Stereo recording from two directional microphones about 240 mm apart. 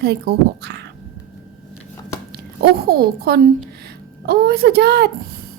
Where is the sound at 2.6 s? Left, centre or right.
Right.